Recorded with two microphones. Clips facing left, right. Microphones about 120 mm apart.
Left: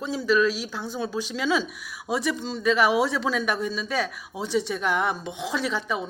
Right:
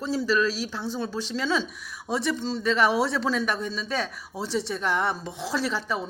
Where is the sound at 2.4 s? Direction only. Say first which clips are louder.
Right 2 dB; 35° right (ahead or behind).